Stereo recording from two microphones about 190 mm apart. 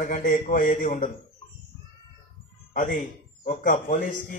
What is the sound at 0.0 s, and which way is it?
A man's voice, 45° left (ahead or behind).